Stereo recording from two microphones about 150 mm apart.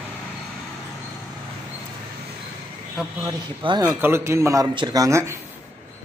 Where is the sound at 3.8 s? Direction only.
15° right (ahead or behind).